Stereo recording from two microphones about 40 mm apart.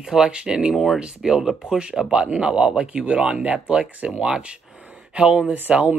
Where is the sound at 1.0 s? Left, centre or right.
Centre.